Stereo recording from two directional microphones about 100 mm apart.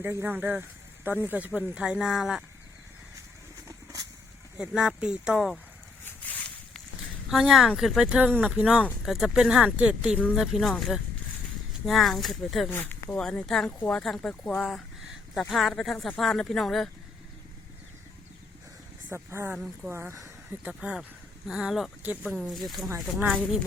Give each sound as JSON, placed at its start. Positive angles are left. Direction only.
{"t": 0.0, "sound": "speech", "side_deg": -25}
{"t": 4.5, "sound": "speech", "side_deg": -5}
{"t": 7.3, "sound": "speech", "side_deg": -5}
{"t": 12.6, "sound": "speech", "side_deg": 20}
{"t": 19.0, "sound": "speech", "side_deg": -25}
{"t": 20.7, "sound": "speech", "side_deg": -10}
{"t": 22.0, "sound": "speech", "side_deg": -15}
{"t": 22.3, "sound": "speech", "side_deg": -5}